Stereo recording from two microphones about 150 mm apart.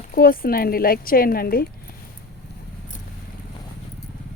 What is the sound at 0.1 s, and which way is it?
Speech, 80° left.